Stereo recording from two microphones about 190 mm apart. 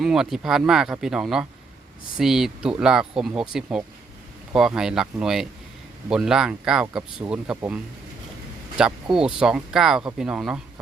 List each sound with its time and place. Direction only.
0.0 s speech: centre (ahead or behind)
8.8 s speech: 5° right (ahead or behind)